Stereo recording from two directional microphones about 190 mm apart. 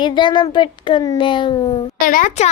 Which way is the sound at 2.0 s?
45° left (ahead or behind).